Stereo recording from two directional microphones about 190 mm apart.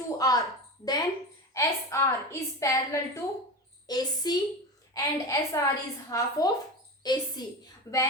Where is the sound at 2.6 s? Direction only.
15° left (ahead or behind).